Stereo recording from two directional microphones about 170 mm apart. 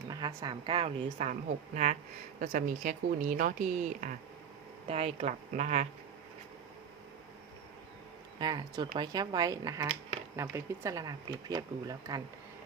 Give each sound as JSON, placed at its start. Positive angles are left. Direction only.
{"t": 0.1, "sound": "a woman's voice", "side_deg": -25}
{"t": 4.9, "sound": "a woman's voice", "side_deg": -35}
{"t": 8.4, "sound": "speech", "side_deg": -25}